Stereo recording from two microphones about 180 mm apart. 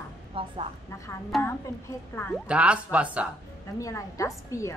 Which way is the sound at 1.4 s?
10° left (ahead or behind).